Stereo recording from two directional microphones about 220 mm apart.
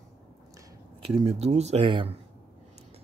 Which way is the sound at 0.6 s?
20° right (ahead or behind).